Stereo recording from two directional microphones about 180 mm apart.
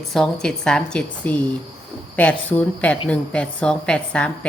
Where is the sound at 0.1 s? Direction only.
5° left (ahead or behind).